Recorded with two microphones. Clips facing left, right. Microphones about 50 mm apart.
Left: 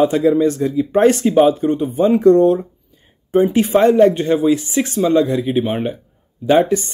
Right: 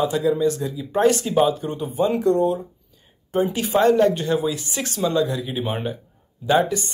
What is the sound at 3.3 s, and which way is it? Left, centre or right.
Speech, left.